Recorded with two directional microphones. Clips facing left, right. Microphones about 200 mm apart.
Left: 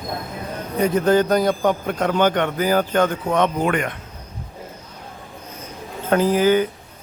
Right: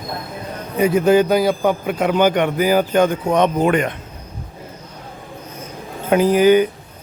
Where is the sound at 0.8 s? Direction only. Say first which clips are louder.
Right 3 dB; 10° right (ahead or behind).